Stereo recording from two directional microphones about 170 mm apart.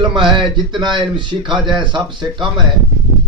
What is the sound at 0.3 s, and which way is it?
A man's voice, 25° right (ahead or behind).